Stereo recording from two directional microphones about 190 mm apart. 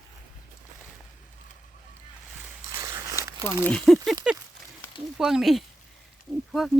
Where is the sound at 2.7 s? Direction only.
15° right (ahead or behind).